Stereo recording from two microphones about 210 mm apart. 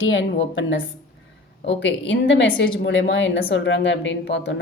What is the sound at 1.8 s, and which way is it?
Speech, 55° left (ahead or behind).